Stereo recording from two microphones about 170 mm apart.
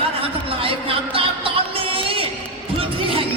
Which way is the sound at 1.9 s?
30° right (ahead or behind).